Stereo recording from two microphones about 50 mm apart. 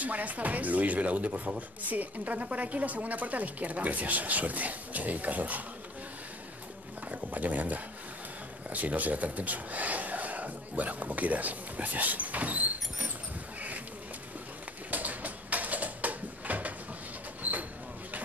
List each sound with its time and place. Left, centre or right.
0.0 s speech: right
7.1 s speech: right
14.9 s a sound: right